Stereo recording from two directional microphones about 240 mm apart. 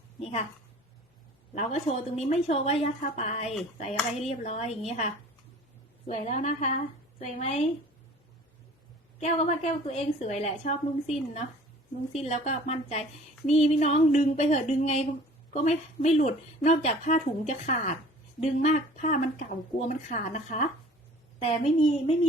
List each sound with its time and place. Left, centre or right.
1.5 s speech: left
9.2 s speech: left